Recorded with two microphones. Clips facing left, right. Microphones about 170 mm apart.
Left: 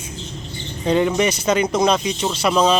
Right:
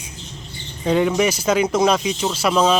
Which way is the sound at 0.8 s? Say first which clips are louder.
Even; 5° right (ahead or behind).